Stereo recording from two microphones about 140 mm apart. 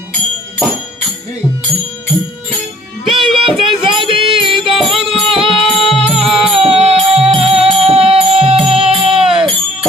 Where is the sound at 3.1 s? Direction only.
40° right (ahead or behind).